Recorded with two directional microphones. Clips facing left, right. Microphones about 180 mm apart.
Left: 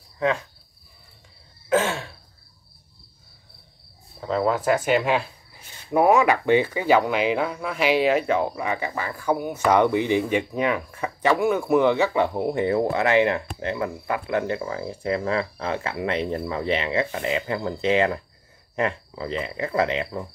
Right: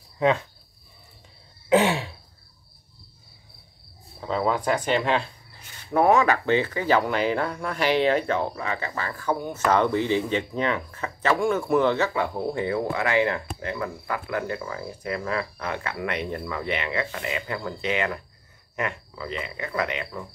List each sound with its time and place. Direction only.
1.7 s throat clearing: 15° right (ahead or behind)
4.3 s speech: centre (ahead or behind); by 20.2 s 30° left (ahead or behind)